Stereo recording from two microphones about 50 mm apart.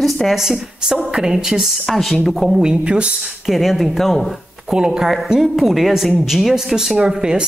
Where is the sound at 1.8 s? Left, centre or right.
Centre.